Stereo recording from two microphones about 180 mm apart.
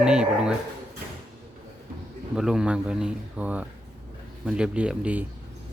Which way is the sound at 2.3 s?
5° right (ahead or behind).